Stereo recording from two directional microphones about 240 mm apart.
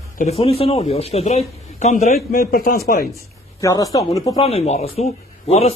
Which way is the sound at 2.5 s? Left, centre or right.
Left.